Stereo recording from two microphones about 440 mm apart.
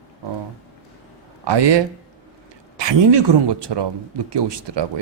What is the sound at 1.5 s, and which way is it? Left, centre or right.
Speech, right.